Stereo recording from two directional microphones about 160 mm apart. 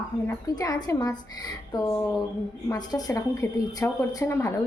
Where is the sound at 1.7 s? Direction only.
25° left (ahead or behind).